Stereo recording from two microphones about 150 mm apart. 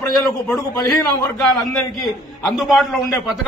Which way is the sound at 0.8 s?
25° left (ahead or behind).